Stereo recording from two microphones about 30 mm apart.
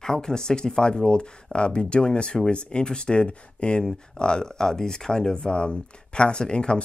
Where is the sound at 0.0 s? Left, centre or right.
Left.